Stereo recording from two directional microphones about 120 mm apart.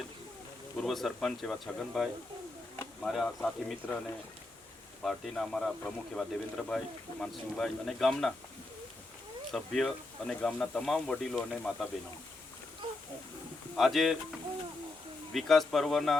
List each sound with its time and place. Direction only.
0.8 s speech: centre (ahead or behind)
5.0 s speech: centre (ahead or behind)
9.5 s speech: centre (ahead or behind)
12.8 s wild animals: 40° right (ahead or behind)
13.7 s speech: centre (ahead or behind)
15.3 s speech: centre (ahead or behind)